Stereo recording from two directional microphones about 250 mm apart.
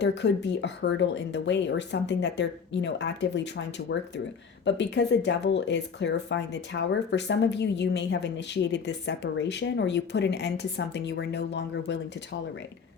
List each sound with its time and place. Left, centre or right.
0.0 s speech: left